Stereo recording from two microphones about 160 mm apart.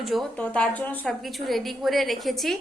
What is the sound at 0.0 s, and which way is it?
A woman's voice, centre (ahead or behind).